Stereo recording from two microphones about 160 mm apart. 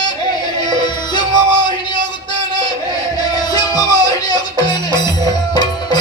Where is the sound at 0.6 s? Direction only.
25° left (ahead or behind).